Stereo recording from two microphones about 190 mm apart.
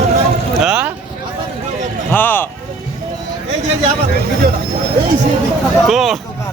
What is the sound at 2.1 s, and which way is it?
Speech, 10° left (ahead or behind).